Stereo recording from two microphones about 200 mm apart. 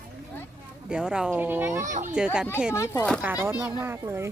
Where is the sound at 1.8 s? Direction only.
40° right (ahead or behind).